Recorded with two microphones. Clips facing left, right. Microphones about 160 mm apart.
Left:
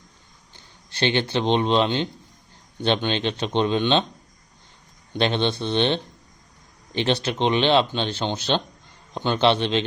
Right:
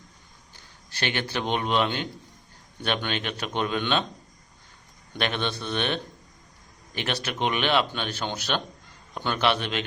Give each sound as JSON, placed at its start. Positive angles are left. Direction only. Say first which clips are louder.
{"t": 0.5, "sound": "speech", "louder": "left 1 dB", "side_deg": 30}
{"t": 5.1, "sound": "speech", "louder": "left 6 dB", "side_deg": 30}